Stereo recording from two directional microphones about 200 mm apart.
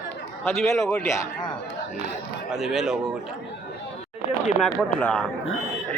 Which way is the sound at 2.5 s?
Centre (ahead or behind).